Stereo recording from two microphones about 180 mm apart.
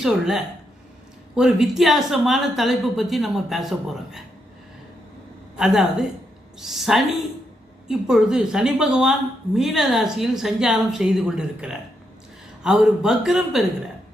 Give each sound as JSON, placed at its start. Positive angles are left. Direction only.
{"t": 0.0, "sound": "speech", "side_deg": 0}
{"t": 5.5, "sound": "speech", "side_deg": -5}